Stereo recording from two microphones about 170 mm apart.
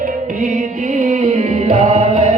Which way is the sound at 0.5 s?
50° right (ahead or behind).